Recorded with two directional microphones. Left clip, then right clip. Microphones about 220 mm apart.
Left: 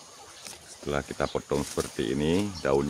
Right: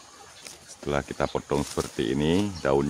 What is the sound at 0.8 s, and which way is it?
Speech, 30° right (ahead or behind).